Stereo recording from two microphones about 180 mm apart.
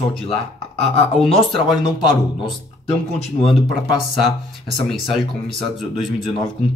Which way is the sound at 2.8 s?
35° left (ahead or behind).